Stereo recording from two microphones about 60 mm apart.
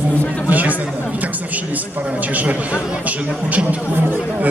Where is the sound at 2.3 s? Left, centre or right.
Right.